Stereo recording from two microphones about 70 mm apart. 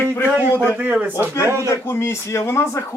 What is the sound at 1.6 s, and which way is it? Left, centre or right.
Speech, left.